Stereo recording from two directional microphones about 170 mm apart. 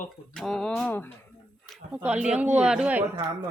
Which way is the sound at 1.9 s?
10° right (ahead or behind).